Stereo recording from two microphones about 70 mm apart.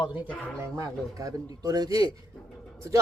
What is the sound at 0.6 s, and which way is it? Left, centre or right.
Speech, right.